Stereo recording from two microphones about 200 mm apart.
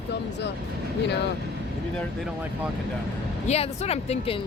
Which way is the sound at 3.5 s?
30° left (ahead or behind).